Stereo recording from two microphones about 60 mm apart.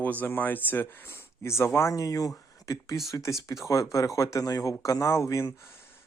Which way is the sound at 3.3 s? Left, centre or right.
Left.